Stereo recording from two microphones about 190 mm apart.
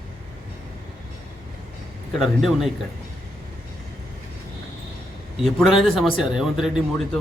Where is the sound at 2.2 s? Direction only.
Centre (ahead or behind).